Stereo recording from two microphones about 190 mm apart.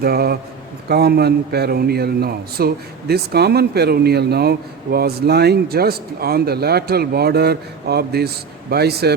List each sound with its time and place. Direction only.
0.0 s a man's voice: 55° right (ahead or behind)